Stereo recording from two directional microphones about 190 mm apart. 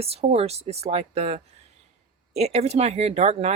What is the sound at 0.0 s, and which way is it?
Speech, 35° right (ahead or behind).